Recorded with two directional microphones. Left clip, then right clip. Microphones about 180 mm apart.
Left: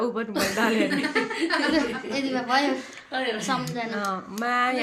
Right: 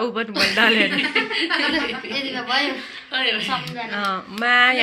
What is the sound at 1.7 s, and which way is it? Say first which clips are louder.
Speech: right 2 dB; 90° left.